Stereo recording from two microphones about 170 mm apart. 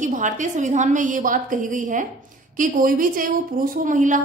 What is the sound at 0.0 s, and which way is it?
A woman's voice, 45° right (ahead or behind).